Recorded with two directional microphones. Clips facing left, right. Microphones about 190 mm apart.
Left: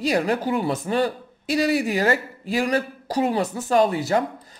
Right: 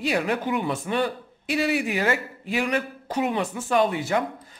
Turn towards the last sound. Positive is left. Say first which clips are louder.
# left 3 dB
turn(degrees=40)  # may be behind; listen again after turning